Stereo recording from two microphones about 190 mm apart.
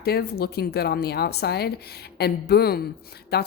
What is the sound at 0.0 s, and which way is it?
Speech, 55° left (ahead or behind).